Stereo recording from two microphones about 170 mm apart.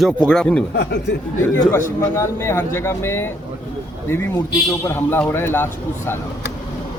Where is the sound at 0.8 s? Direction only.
85° left.